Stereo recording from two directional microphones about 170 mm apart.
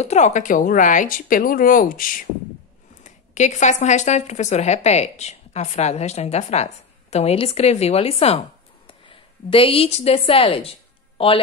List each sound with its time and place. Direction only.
0.0 s speech: 40° left (ahead or behind)
3.0 s a woman's voice: 45° left (ahead or behind)